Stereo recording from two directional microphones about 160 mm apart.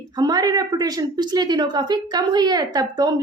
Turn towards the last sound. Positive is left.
turn(degrees=-25)  # may be behind; listen again after turning